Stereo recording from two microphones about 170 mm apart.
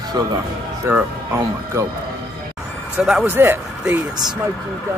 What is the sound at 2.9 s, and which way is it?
Speech, 5° right (ahead or behind).